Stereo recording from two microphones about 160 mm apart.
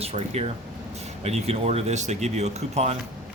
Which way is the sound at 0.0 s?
40° right (ahead or behind).